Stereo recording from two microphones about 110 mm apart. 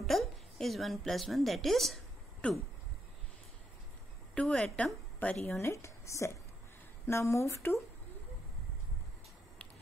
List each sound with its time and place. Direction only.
0.0 s a woman's voice: centre (ahead or behind)
4.4 s a woman's voice: 5° left (ahead or behind)
5.2 s speech: 15° left (ahead or behind)
5.6 s speech: 25° left (ahead or behind)